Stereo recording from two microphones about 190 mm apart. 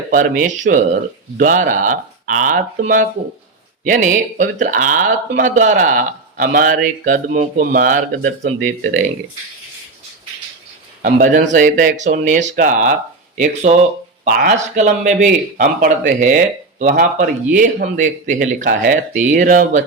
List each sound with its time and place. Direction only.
0.1 s speech: 45° right (ahead or behind)
11.0 s speech: 45° right (ahead or behind)